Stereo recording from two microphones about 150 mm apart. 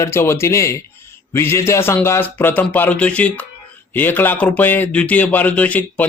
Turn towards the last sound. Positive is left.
turn(degrees=10)  # may be behind; listen again after turning